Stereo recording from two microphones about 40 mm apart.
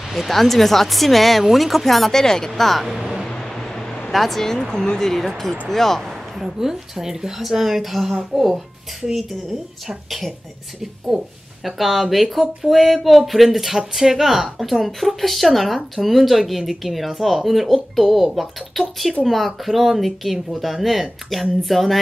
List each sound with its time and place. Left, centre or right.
0.1 s speech: centre
3.5 s a sound: centre
4.1 s speech: centre
6.4 s a woman's voice: centre
11.1 s a woman's voice: centre